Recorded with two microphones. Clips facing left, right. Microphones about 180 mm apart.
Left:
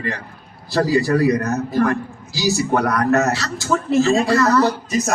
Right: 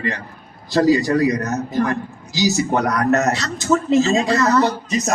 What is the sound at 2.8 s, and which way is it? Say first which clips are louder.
Speech: even; 20° right (ahead or behind).